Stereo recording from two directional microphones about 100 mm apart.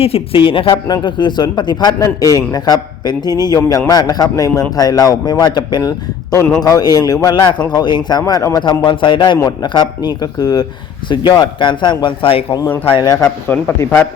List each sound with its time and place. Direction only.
0.0 s speech: 70° left (ahead or behind)
0.7 s a man's voice: 45° left (ahead or behind)
8.2 s a man's voice: 30° left (ahead or behind)
8.8 s speech: 50° left (ahead or behind)
12.6 s speech: 20° left (ahead or behind)